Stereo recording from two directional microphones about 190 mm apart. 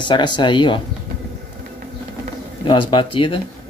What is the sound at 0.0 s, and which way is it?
Speech, 25° left (ahead or behind).